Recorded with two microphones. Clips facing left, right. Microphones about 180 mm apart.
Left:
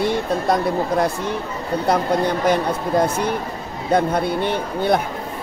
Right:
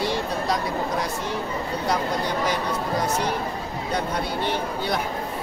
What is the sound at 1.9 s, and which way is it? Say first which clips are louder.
Speech: left 7 dB; 55° left (ahead or behind).